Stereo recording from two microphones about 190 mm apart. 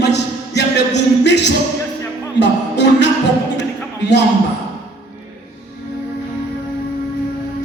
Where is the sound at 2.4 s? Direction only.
65° left (ahead or behind).